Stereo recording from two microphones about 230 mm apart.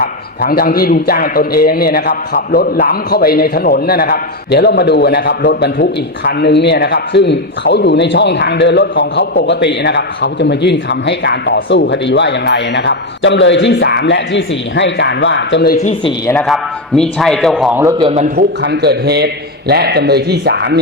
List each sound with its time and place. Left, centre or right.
0.4 s a man's voice: left
15.8 s speech: left
16.5 s a man's voice: centre
18.1 s a man's voice: right
18.6 s a man's voice: right